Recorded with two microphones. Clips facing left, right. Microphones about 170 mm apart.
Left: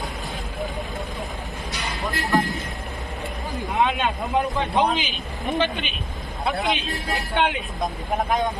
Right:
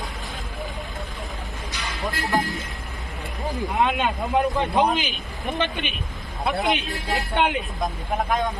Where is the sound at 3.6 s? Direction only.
Centre (ahead or behind).